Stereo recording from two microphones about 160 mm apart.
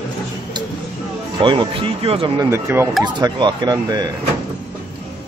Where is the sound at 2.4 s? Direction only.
15° right (ahead or behind).